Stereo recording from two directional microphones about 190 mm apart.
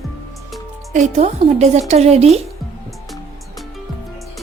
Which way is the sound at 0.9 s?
35° right (ahead or behind).